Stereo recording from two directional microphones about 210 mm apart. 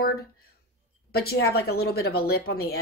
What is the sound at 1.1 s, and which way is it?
Speech, 45° left (ahead or behind).